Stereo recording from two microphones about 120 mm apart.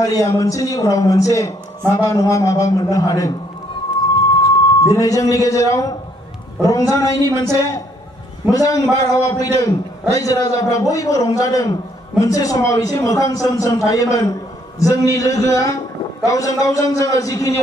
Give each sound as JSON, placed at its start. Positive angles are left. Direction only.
{"t": 0.0, "sound": "a man's voice", "side_deg": 30}
{"t": 4.8, "sound": "a man's voice", "side_deg": 30}